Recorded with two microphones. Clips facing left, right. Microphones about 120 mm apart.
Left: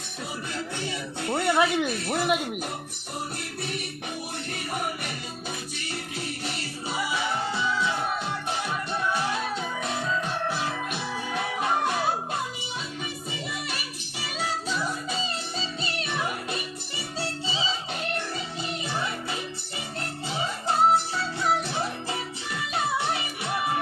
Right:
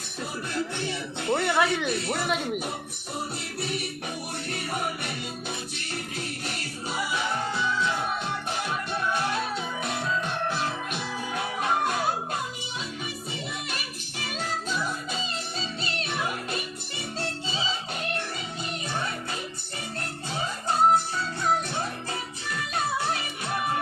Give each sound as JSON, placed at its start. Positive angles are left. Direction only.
{"t": 0.9, "sound": "speech", "side_deg": 10}
{"t": 14.2, "sound": "music", "side_deg": 10}